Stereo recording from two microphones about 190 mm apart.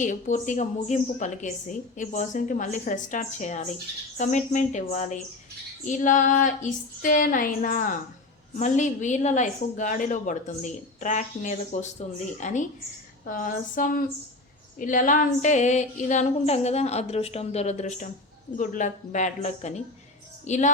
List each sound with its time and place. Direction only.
0.0 s a woman's voice: 40° left (ahead or behind)
5.8 s female singing: 40° left (ahead or behind)
8.5 s a woman's voice: 40° left (ahead or behind)
13.2 s female singing: 45° left (ahead or behind)
14.8 s a woman's voice: 45° left (ahead or behind)